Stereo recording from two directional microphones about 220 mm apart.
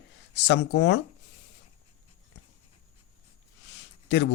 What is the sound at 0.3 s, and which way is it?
Speech, 55° left (ahead or behind).